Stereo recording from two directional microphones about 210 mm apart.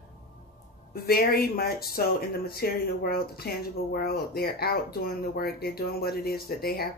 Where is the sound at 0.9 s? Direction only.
45° left (ahead or behind).